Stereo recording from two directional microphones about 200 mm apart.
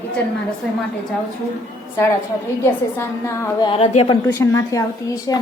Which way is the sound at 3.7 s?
30° left (ahead or behind).